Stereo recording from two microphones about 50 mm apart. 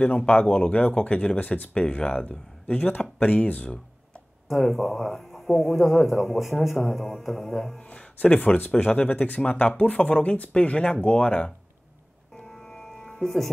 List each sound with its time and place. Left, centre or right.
0.3 s speech: left
4.5 s speech: centre
7.8 s speech: left
12.4 s music: centre